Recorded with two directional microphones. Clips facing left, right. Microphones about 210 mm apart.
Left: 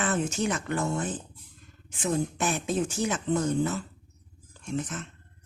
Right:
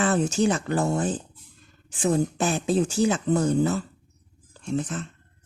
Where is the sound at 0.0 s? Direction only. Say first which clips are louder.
Right 6 dB; 35° right (ahead or behind).